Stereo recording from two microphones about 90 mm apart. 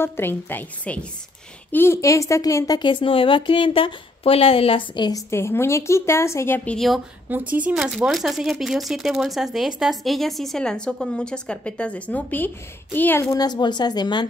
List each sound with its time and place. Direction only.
0.0 s a woman's voice: 25° left (ahead or behind)
2.0 s a woman's voice: 35° left (ahead or behind)
2.8 s a woman's voice: 75° left (ahead or behind)
5.1 s a woman's voice: 30° left (ahead or behind)
7.2 s speech: 20° right (ahead or behind)
7.7 s a woman's voice: 5° right (ahead or behind); by 13.2 s 20° left (ahead or behind)
13.4 s speech: 50° left (ahead or behind)